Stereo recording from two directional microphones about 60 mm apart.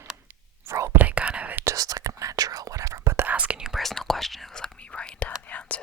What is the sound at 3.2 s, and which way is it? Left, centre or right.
Whispering, right.